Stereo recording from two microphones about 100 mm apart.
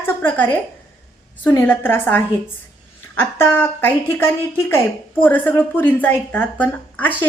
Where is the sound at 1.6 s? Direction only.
20° left (ahead or behind).